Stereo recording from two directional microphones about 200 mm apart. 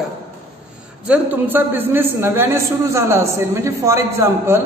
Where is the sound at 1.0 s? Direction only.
10° right (ahead or behind).